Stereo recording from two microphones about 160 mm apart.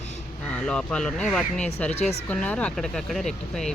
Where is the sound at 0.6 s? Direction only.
5° left (ahead or behind).